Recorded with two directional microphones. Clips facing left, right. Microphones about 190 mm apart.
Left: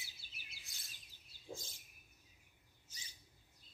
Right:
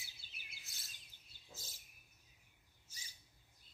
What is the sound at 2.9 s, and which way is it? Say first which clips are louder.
Bird: left 1 dB; 10° right (ahead or behind).